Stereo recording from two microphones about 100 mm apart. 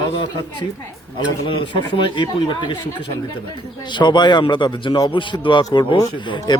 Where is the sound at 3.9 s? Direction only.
50° left (ahead or behind).